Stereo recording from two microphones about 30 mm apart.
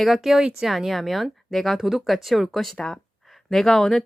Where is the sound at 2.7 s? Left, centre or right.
Left.